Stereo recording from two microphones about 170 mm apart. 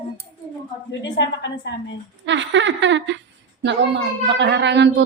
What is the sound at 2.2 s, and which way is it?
A woman's voice, 90° right.